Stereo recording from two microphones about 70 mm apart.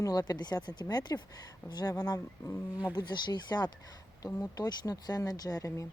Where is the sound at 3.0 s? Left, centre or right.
Left.